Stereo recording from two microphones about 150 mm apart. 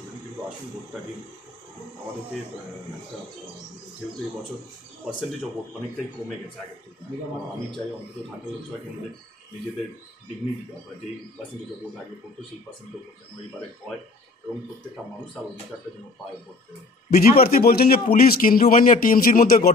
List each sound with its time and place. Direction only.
17.1 s a man's voice: 80° left